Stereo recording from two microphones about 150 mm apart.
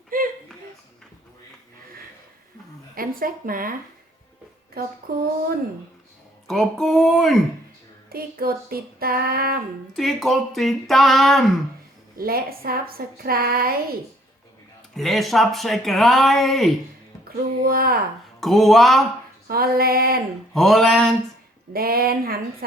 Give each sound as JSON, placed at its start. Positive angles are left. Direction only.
{"t": 0.1, "sound": "a sound", "side_deg": -65}
{"t": 2.9, "sound": "speech", "side_deg": -70}
{"t": 4.8, "sound": "child singing", "side_deg": -80}
{"t": 6.5, "sound": "speech", "side_deg": 0}
{"t": 8.1, "sound": "child singing", "side_deg": -85}
{"t": 9.9, "sound": "speech", "side_deg": 0}
{"t": 12.1, "sound": "child singing", "side_deg": -85}
{"t": 14.9, "sound": "speech", "side_deg": 0}
{"t": 17.3, "sound": "child singing", "side_deg": -80}
{"t": 18.3, "sound": "speech", "side_deg": 0}
{"t": 19.5, "sound": "child singing", "side_deg": -90}
{"t": 20.5, "sound": "speech", "side_deg": 0}
{"t": 21.7, "sound": "child singing", "side_deg": -85}